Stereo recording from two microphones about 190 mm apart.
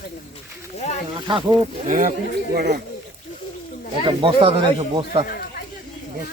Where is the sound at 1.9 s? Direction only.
45° right (ahead or behind).